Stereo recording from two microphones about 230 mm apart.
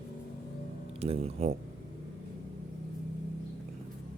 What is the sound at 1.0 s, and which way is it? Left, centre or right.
Speech, right.